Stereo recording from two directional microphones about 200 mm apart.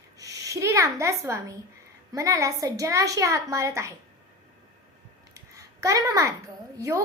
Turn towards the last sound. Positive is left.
turn(degrees=-15)  # may be behind; listen again after turning